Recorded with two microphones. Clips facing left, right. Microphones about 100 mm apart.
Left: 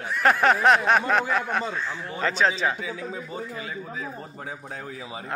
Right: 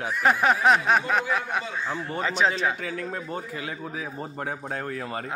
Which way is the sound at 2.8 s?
60° right (ahead or behind).